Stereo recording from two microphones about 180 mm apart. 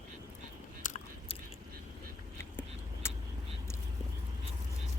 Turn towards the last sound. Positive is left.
turn(degrees=15)  # may be behind; listen again after turning